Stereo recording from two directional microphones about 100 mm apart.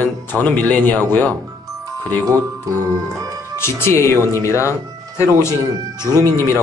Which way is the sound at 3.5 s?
25° left (ahead or behind).